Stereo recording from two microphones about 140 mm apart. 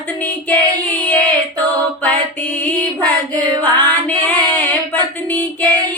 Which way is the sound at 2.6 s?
10° left (ahead or behind).